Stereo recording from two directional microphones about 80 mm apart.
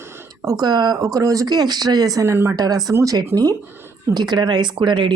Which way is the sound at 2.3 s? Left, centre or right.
Right.